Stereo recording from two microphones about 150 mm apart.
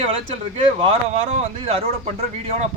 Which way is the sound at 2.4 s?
45° right (ahead or behind).